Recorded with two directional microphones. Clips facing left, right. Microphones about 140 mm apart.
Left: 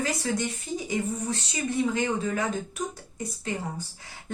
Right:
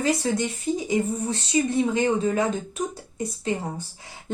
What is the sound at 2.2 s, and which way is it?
Speech, 25° right (ahead or behind).